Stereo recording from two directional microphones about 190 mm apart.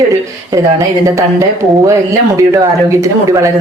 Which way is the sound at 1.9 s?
15° right (ahead or behind).